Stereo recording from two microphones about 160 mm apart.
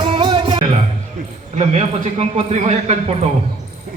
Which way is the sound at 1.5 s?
45° right (ahead or behind).